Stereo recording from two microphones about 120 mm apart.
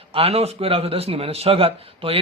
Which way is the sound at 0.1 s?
55° right (ahead or behind).